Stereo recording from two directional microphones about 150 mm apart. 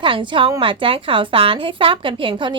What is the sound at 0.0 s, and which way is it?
A woman's voice, 35° right (ahead or behind).